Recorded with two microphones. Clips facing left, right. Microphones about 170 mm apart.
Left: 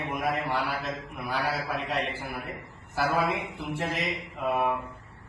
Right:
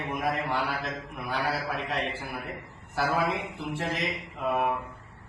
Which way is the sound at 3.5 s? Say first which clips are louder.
Even; centre (ahead or behind).